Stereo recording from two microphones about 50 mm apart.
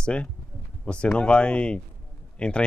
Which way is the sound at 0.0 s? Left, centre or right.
Left.